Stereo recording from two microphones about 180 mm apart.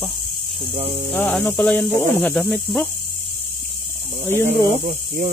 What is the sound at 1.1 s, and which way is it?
Speech, 5° left (ahead or behind).